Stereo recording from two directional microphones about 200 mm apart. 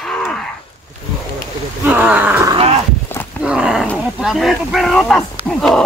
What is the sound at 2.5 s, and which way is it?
Speech, 30° right (ahead or behind).